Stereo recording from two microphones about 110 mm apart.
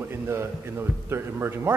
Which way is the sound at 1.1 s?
20° right (ahead or behind).